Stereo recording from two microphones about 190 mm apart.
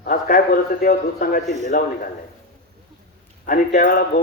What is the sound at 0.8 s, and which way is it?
Speech, 50° left (ahead or behind).